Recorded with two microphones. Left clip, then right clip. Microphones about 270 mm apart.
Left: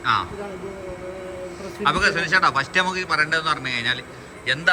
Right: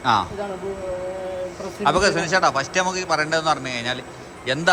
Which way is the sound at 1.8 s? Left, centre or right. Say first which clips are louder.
Right 1 dB; centre.